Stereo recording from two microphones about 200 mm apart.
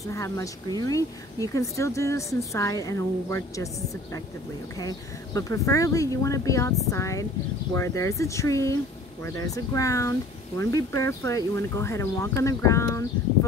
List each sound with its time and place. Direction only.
0.0 s speech: 15° left (ahead or behind)